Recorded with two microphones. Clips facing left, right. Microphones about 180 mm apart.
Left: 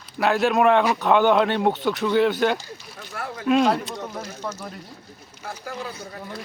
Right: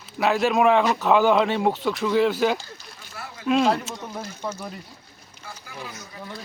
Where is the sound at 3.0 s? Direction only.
50° left (ahead or behind).